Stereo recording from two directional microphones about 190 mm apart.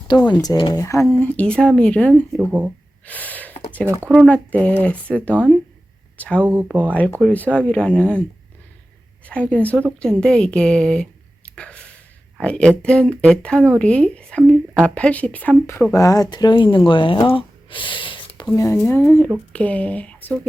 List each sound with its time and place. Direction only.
0.1 s speech: 25° left (ahead or behind); by 2.4 s 5° left (ahead or behind)
2.5 s speech: 10° right (ahead or behind)
3.1 s gasp: 10° left (ahead or behind)
3.8 s speech: 15° right (ahead or behind)
4.1 s speech: 5° left (ahead or behind)
6.4 s speech: 10° right (ahead or behind)
7.2 s speech: 5° left (ahead or behind)
9.2 s speech: 5° left (ahead or behind); by 18.4 s 25° left (ahead or behind)
18.5 s speech: 15° left (ahead or behind)